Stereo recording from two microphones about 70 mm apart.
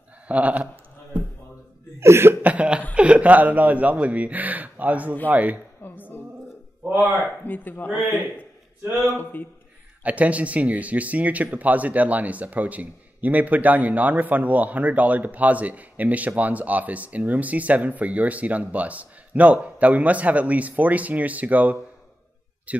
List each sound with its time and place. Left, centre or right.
0.3 s speech: right
2.0 s cough: right
2.4 s cough: centre
2.9 s speech: centre
5.8 s a sound: left
6.8 s speech: right
7.4 s speech: left
7.9 s speech: right
9.1 s speech: left
10.0 s speech: right